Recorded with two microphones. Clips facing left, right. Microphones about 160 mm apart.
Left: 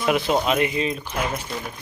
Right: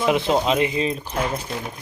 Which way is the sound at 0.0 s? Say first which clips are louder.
Right 1 dB; 25° right (ahead or behind).